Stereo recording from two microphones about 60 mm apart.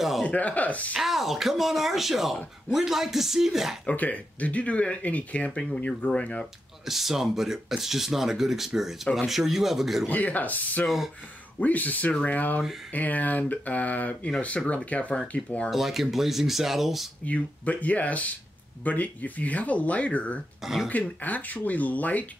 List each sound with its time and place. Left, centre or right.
0.2 s speech: left
0.9 s speech: centre
3.8 s speech: left
6.9 s speech: centre
10.0 s speech: left
15.7 s speech: centre
17.2 s speech: left
20.6 s speech: centre
20.9 s speech: left